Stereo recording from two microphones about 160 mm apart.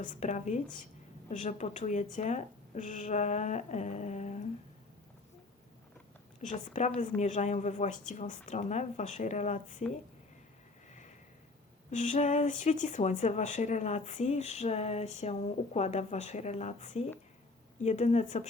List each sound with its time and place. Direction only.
0.0 s speech: 50° left (ahead or behind)
6.4 s speech: 50° left (ahead or behind)
11.9 s speech: 50° left (ahead or behind)